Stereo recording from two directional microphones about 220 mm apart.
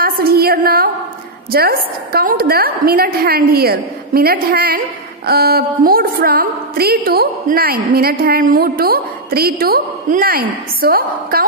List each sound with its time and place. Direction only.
0.0 s a woman's voice: 45° right (ahead or behind)